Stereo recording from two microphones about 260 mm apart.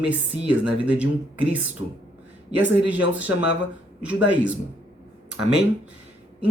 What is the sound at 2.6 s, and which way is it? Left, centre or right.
Speech, centre.